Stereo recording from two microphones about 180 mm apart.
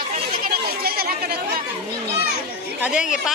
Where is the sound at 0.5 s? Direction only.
55° right (ahead or behind).